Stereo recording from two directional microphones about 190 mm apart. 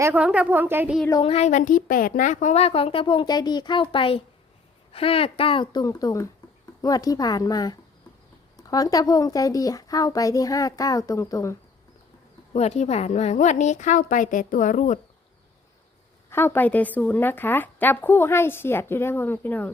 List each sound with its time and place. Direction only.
0.0 s speech: 5° right (ahead or behind)
1.1 s a woman's voice: 30° left (ahead or behind)
12.5 s a woman's voice: 35° left (ahead or behind)
16.3 s a woman's voice: 10° left (ahead or behind)